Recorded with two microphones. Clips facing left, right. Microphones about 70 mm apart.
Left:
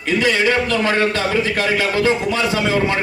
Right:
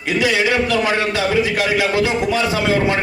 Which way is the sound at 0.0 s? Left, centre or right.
Centre.